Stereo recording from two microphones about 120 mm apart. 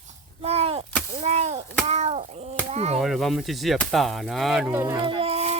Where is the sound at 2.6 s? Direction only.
60° right (ahead or behind).